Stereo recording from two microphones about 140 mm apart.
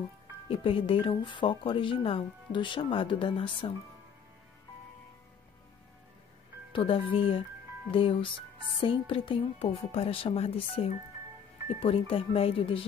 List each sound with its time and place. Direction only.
0.5 s speech: 40° left (ahead or behind)
6.7 s speech: 40° left (ahead or behind)